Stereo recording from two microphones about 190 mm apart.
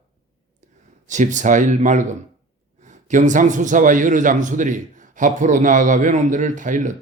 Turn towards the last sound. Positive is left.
turn(degrees=-40)  # may be behind; listen again after turning